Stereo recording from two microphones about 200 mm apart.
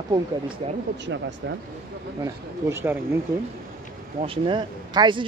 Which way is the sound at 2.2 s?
10° right (ahead or behind).